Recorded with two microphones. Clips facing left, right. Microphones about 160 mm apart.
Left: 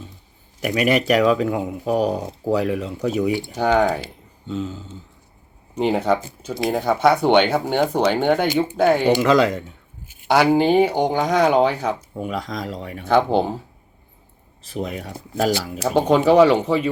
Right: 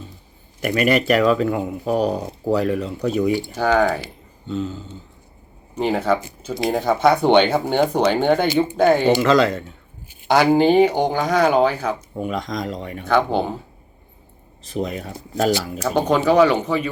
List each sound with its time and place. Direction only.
0.6 s speech: 5° left (ahead or behind)
4.4 s speech: 10° left (ahead or behind)
5.7 s speech: 20° left (ahead or behind)
12.1 s speech: 5° left (ahead or behind)
13.1 s speech: 25° left (ahead or behind)
14.7 s speech: 5° left (ahead or behind)
16.1 s speech: 25° left (ahead or behind)